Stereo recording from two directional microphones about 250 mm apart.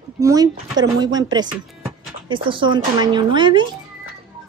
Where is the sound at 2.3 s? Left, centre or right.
Centre.